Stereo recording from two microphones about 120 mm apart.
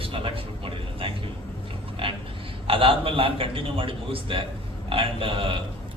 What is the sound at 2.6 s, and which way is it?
A man's voice, 50° right (ahead or behind).